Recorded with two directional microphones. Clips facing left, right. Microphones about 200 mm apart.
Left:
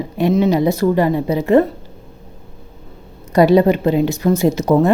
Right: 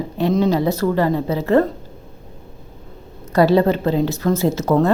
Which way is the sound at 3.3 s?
15° left (ahead or behind).